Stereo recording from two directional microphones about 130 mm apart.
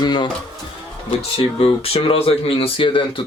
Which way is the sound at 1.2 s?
45° left (ahead or behind).